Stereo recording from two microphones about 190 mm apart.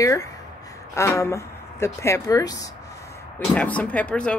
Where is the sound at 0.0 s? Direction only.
15° left (ahead or behind).